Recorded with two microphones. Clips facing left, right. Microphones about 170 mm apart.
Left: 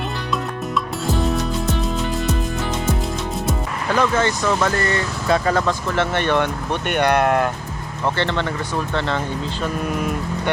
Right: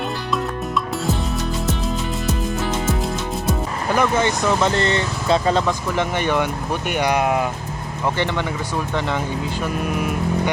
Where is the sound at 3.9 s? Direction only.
15° right (ahead or behind).